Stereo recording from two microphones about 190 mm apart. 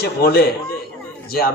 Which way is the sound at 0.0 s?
55° left (ahead or behind).